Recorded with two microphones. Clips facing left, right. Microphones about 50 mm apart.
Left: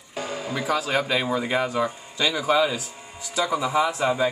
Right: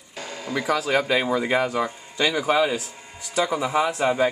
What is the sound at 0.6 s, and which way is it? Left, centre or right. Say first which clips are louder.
Speech: right 2 dB; right.